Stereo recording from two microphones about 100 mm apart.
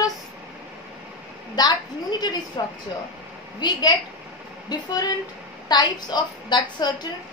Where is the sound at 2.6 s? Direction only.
50° left (ahead or behind).